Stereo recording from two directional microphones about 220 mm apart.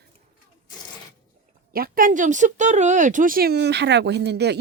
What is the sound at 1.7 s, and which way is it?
Speech, 40° right (ahead or behind).